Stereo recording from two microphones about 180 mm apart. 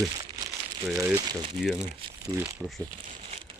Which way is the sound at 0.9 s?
15° right (ahead or behind).